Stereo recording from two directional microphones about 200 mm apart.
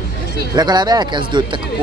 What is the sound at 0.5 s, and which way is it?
Speech, 20° right (ahead or behind).